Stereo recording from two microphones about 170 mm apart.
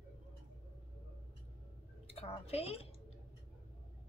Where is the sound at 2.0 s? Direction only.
35° left (ahead or behind).